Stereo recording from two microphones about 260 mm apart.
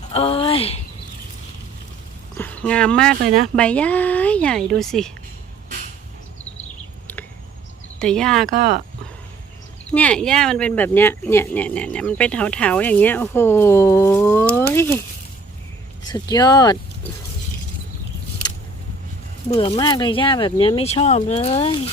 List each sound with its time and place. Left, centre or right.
0.1 s a sound: left
2.3 s a sound: centre
3.5 s a woman's voice: centre
7.9 s a woman's voice: centre
9.9 s speech: centre
16.0 s speech: centre
19.5 s speech: left